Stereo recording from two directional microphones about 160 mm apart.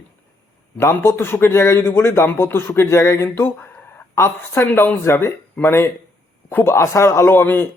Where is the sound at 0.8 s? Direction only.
15° left (ahead or behind).